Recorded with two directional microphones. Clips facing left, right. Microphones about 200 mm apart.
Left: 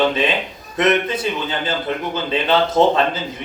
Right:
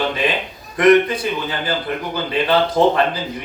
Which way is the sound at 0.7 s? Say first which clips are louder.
Right 5 dB; 25° left (ahead or behind).